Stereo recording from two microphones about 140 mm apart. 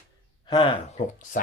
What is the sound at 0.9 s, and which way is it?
Speech, 65° left (ahead or behind).